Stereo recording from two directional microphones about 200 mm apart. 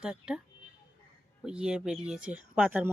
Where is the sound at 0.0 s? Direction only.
5° right (ahead or behind).